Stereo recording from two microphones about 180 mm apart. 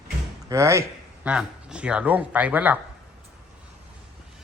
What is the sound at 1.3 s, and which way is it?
A man's voice, 5° right (ahead or behind).